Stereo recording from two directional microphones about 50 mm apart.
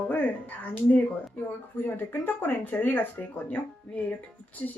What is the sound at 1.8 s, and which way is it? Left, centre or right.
A woman's voice, left.